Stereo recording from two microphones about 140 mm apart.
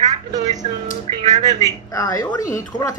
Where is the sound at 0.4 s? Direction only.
55° right (ahead or behind).